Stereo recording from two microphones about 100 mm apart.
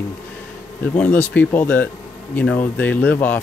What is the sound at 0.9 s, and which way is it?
Speech, 15° left (ahead or behind).